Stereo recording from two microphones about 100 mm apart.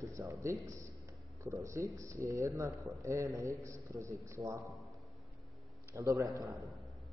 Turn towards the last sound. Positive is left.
turn(degrees=-35)  # may be behind; listen again after turning